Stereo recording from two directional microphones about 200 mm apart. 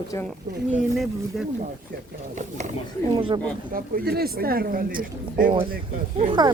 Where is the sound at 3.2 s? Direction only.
25° right (ahead or behind).